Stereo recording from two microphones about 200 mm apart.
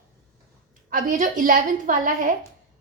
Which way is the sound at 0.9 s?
40° right (ahead or behind).